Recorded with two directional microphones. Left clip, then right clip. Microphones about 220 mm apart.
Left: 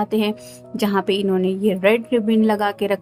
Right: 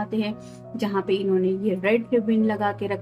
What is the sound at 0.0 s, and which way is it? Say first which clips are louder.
A woman's voice: left 7 dB; 50° left (ahead or behind).